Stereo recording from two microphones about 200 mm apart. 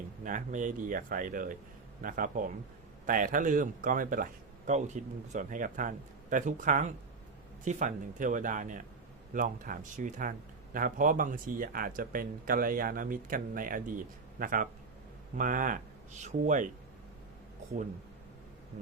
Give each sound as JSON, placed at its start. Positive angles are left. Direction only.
{"t": 0.3, "sound": "a man's voice", "side_deg": -40}